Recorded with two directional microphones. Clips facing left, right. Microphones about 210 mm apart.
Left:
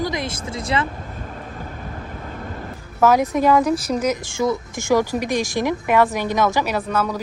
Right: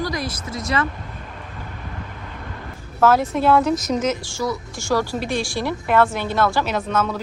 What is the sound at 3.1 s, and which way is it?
A woman's voice, 15° left (ahead or behind).